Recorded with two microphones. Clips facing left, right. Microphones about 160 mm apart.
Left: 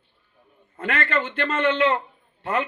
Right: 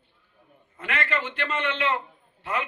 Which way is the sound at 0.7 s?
40° left (ahead or behind).